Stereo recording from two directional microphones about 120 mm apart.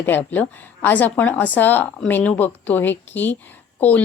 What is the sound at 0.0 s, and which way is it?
Speech, 15° left (ahead or behind).